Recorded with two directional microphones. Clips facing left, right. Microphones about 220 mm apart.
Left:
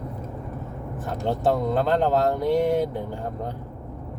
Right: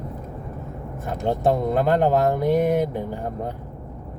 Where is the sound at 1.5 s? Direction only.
15° right (ahead or behind).